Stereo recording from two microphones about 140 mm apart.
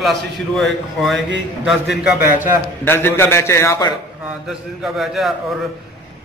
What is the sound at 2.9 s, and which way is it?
A man's voice, 15° left (ahead or behind).